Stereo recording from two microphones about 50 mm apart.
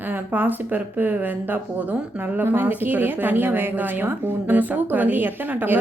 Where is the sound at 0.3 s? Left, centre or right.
Right.